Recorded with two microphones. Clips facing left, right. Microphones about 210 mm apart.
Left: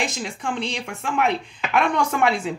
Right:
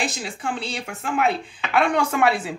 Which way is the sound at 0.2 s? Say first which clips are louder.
Left 2 dB; 5° right (ahead or behind).